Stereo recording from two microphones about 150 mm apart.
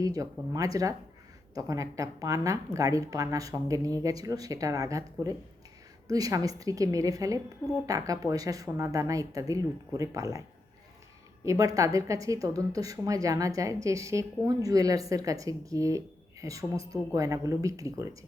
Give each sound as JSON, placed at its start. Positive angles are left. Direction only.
{"t": 0.0, "sound": "a woman's voice", "side_deg": -20}
{"t": 11.4, "sound": "a woman's voice", "side_deg": -25}